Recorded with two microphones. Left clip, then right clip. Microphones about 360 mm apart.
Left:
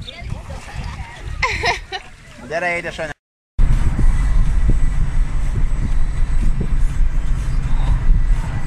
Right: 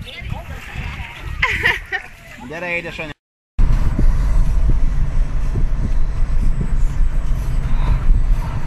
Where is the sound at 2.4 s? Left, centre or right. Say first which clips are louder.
Left 3 dB; left.